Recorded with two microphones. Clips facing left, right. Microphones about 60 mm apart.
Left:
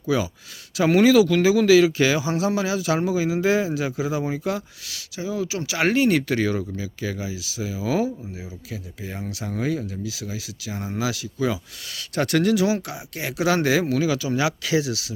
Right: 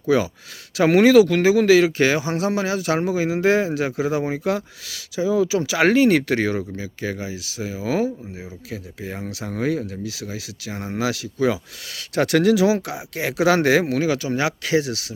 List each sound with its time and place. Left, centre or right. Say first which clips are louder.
0.8 s speech: right 3 dB; right
4.4 s speech: right 5 dB; right
5.2 s speech: right 8 dB; right
6.7 s speech: right 1 dB; right
9.0 s speech: right 1 dB; right
13.7 s speech: right 2 dB; right